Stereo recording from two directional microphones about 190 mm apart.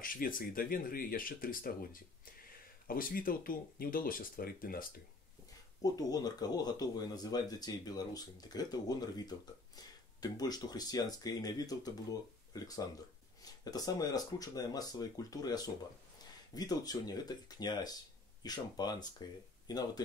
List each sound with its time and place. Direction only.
0.0 s speech: 45° left (ahead or behind)
5.8 s speech: 20° left (ahead or behind)